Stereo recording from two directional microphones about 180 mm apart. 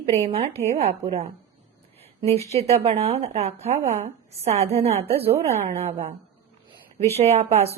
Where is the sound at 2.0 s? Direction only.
35° right (ahead or behind).